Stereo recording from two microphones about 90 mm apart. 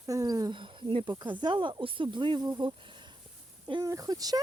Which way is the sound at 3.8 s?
40° right (ahead or behind).